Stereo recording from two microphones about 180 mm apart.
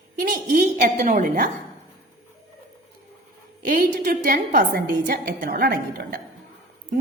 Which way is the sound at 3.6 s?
45° right (ahead or behind).